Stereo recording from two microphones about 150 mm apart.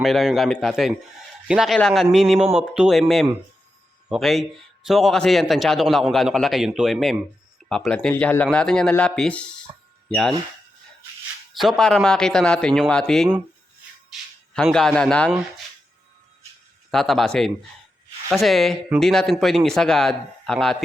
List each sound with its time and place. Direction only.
0.0 s a man's voice: centre (ahead or behind)
11.6 s a man's voice: centre (ahead or behind)
16.9 s a man's voice: centre (ahead or behind)